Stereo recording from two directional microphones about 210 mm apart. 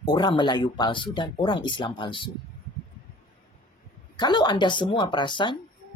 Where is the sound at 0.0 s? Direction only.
20° left (ahead or behind).